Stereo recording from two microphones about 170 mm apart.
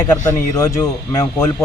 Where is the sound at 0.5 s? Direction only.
20° left (ahead or behind).